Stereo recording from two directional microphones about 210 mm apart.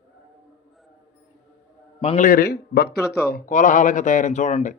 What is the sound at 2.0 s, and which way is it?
A man's voice, 30° left (ahead or behind).